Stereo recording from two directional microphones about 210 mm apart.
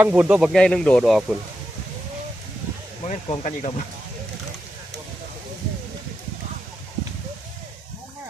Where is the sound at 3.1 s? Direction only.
35° left (ahead or behind).